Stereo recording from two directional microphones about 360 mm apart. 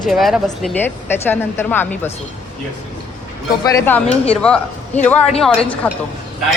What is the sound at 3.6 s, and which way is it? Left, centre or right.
A man's voice, centre.